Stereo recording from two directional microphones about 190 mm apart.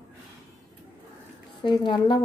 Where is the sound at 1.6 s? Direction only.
25° left (ahead or behind).